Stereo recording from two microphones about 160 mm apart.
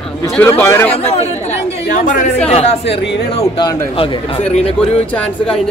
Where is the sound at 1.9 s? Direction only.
55° left (ahead or behind).